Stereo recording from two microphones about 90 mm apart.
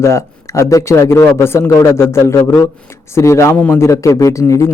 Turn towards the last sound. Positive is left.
turn(degrees=35)  # may be behind; listen again after turning